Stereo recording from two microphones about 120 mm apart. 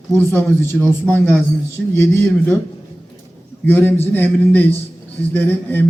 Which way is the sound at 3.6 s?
15° left (ahead or behind).